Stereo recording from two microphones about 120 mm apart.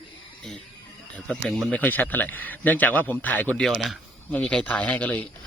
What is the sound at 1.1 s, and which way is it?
A man's voice, 10° left (ahead or behind).